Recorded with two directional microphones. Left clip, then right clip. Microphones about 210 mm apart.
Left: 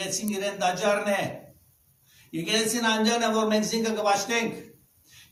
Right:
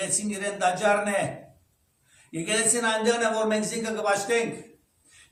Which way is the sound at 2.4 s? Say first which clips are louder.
Even; 10° right (ahead or behind).